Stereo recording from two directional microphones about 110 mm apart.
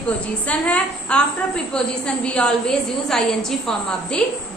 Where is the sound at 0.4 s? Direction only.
10° left (ahead or behind).